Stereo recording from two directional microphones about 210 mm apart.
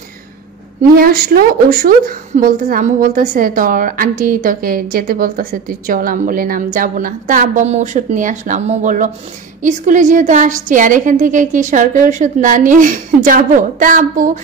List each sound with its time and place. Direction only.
0.9 s a woman's voice: 45° right (ahead or behind)